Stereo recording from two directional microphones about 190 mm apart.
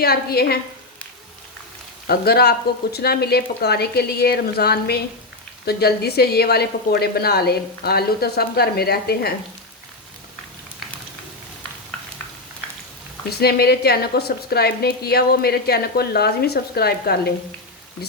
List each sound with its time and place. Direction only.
0.0 s a woman's voice: 55° left (ahead or behind)
2.0 s a woman's voice: 55° left (ahead or behind)
13.4 s a woman's voice: 55° left (ahead or behind)